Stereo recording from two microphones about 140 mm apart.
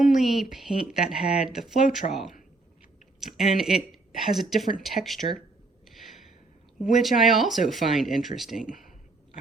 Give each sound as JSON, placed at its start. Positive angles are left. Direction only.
{"t": 0.0, "sound": "speech", "side_deg": 0}
{"t": 3.5, "sound": "speech", "side_deg": 0}
{"t": 5.9, "sound": "gasp", "side_deg": 0}
{"t": 6.7, "sound": "speech", "side_deg": 0}
{"t": 8.6, "sound": "speech", "side_deg": 80}